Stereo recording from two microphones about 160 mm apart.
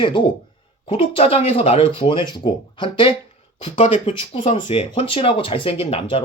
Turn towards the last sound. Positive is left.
turn(degrees=35)  # may be behind; listen again after turning